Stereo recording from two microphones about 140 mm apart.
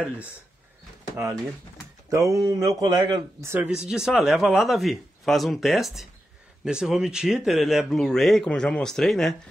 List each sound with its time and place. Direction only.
2.0 s speech: 20° right (ahead or behind)
3.4 s speech: 10° right (ahead or behind)